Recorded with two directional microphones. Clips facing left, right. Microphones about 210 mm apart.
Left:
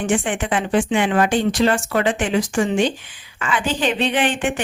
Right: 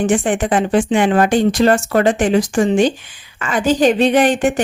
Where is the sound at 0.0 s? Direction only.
40° right (ahead or behind).